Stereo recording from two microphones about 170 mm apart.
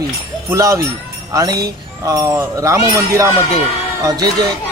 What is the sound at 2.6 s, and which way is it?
A man's voice, 15° right (ahead or behind).